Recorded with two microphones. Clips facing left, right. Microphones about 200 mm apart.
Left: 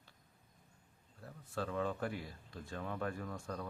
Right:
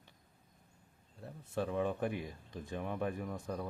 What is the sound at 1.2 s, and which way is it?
Speech, 20° right (ahead or behind).